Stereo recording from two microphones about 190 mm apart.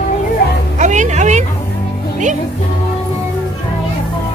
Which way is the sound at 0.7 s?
40° right (ahead or behind).